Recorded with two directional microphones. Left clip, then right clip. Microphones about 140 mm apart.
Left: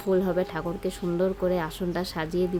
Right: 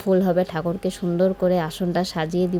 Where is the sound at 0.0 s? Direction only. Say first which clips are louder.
Right 5 dB; 30° right (ahead or behind).